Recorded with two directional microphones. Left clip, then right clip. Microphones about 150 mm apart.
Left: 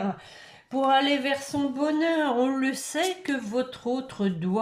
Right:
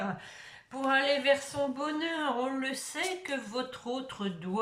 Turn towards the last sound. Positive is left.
turn(degrees=35)  # may be behind; listen again after turning